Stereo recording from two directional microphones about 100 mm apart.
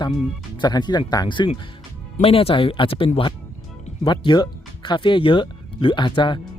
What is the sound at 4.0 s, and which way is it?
Speech, 50° left (ahead or behind).